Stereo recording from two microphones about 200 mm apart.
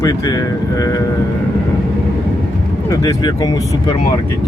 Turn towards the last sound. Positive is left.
turn(degrees=20)  # may be behind; listen again after turning